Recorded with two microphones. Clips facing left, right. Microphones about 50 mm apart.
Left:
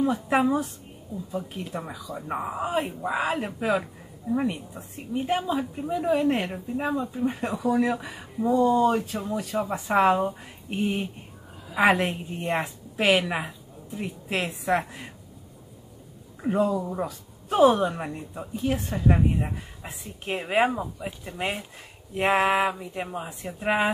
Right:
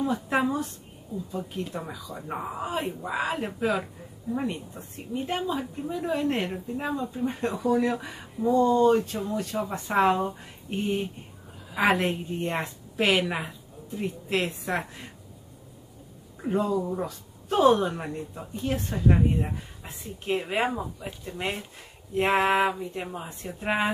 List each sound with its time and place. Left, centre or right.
0.0 s speech: centre
11.7 s a woman's voice: centre
16.3 s speech: centre